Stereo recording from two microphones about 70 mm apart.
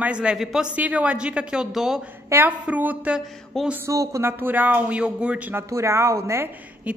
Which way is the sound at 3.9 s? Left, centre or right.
Right.